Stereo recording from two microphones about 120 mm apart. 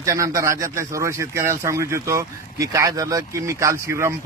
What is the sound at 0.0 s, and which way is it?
Speech, 25° right (ahead or behind).